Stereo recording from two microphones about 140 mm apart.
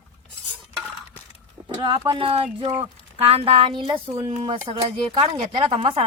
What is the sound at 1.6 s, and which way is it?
Speech, 35° right (ahead or behind).